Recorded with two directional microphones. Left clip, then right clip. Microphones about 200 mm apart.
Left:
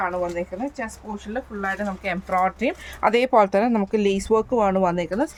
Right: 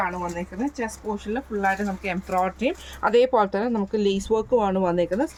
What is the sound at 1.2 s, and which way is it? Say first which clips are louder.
Speech: right 3 dB; 25° left (ahead or behind).